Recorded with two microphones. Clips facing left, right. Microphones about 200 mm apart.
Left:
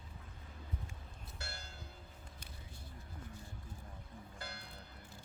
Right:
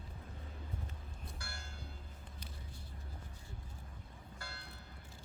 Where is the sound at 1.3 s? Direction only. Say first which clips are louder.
Left 5 dB; 25° left (ahead or behind).